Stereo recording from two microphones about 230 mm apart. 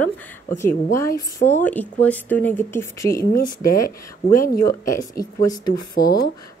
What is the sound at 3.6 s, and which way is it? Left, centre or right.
Speech, left.